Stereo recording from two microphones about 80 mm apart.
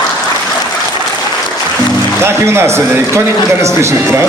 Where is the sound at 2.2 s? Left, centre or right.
Right.